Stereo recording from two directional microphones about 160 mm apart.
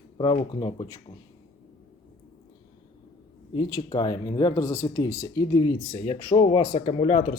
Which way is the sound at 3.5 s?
30° left (ahead or behind).